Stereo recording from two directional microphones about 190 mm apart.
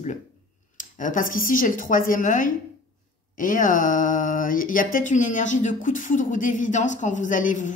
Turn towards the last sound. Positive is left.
turn(degrees=40)  # may be behind; listen again after turning